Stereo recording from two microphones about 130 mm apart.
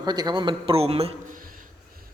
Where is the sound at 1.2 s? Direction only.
90° right.